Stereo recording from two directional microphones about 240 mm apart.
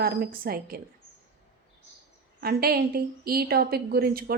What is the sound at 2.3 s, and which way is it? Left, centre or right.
Speech, right.